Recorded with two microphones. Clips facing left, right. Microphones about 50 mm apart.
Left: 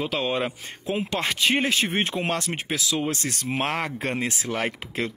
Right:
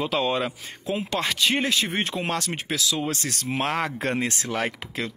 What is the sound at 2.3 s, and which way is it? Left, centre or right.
Speech, left.